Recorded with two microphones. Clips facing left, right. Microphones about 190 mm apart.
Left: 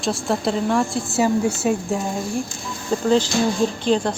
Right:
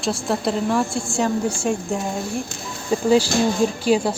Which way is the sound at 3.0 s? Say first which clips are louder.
Right 1 dB; 10° right (ahead or behind).